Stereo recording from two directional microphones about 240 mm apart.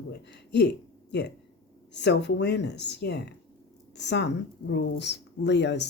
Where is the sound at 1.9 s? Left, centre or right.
Left.